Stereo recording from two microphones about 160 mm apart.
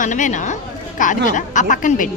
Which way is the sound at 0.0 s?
50° left (ahead or behind).